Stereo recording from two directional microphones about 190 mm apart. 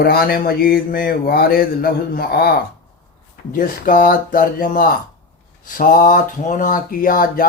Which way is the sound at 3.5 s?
45° left (ahead or behind).